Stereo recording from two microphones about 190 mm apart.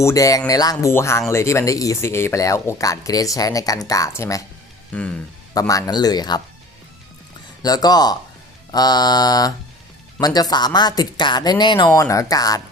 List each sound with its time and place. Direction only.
0.0 s speech: 15° left (ahead or behind)
5.5 s speech: 20° left (ahead or behind)
7.6 s speech: 20° left (ahead or behind)